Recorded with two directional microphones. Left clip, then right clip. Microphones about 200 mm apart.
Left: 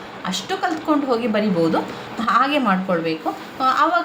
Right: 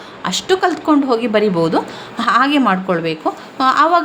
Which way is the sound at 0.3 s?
55° right (ahead or behind).